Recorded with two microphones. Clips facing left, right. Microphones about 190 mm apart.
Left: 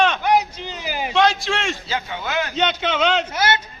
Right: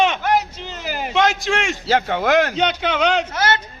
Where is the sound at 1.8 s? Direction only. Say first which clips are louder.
Right 9 dB; 75° right (ahead or behind).